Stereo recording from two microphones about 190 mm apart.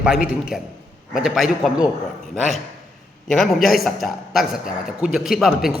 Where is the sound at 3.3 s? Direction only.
Centre (ahead or behind).